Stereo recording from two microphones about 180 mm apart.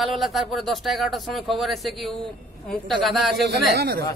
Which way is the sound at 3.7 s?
60° right (ahead or behind).